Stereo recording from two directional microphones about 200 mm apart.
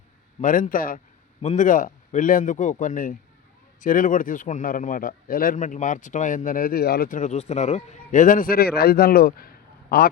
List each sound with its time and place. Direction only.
0.4 s speech: 40° left (ahead or behind)